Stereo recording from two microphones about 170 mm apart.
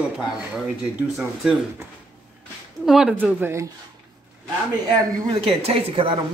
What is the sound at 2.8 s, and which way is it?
Speech, 5° right (ahead or behind).